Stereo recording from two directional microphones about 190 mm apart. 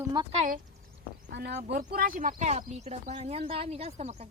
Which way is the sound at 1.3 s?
60° right (ahead or behind).